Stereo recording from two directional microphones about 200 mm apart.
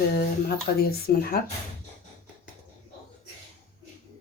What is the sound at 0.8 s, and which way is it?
Speech, 50° left (ahead or behind).